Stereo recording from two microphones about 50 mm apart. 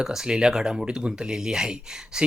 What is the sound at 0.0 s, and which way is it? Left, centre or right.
Speech, centre.